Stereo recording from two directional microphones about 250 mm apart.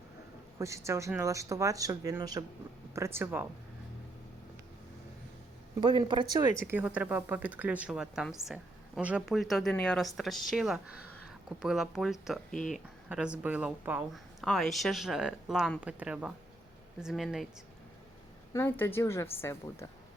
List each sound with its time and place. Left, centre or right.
0.6 s speech: centre
5.8 s speech: centre
6.7 s speech: centre
18.5 s a woman's voice: centre